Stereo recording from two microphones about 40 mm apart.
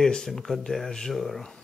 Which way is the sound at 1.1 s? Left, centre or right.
Centre.